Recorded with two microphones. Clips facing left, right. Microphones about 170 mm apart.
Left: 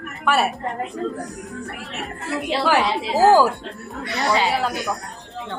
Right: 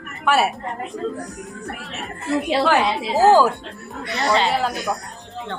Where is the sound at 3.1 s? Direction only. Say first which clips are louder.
Even; 20° right (ahead or behind).